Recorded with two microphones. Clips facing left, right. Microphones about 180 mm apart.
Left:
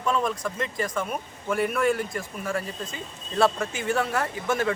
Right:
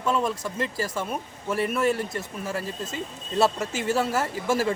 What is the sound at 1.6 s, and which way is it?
Speech, centre (ahead or behind).